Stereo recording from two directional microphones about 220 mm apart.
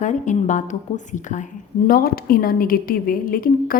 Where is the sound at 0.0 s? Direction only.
35° left (ahead or behind).